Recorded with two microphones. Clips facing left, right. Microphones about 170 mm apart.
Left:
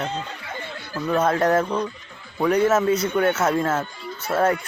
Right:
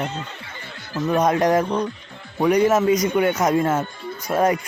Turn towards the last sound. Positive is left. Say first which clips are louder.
# right 1 dB
turn(degrees=-15)  # may be behind; listen again after turning